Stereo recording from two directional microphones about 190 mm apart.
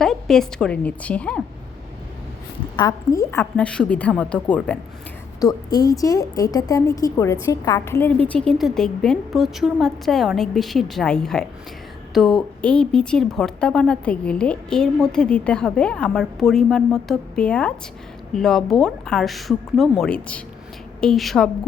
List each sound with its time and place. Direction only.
0.0 s a woman's voice: centre (ahead or behind)
2.7 s a woman's voice: 20° left (ahead or behind)
3.6 s a woman's voice: 5° left (ahead or behind)
5.4 s a woman's voice: 20° left (ahead or behind); by 21.5 s centre (ahead or behind)